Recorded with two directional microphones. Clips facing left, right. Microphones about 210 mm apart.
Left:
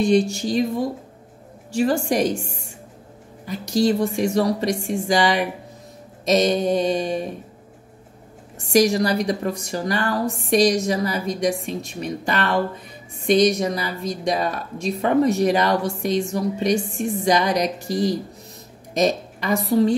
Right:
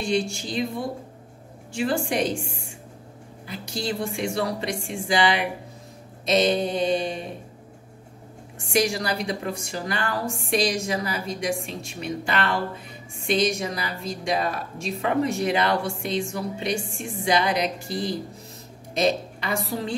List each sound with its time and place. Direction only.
0.0 s speech: 40° left (ahead or behind)
1.7 s speech: 40° left (ahead or behind)
6.2 s mantra: 45° left (ahead or behind)
8.7 s speech: 40° left (ahead or behind)